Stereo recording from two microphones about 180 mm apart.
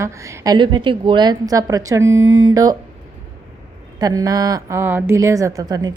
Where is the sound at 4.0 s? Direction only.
20° right (ahead or behind).